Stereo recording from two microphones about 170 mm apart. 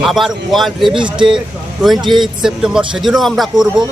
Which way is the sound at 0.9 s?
30° right (ahead or behind).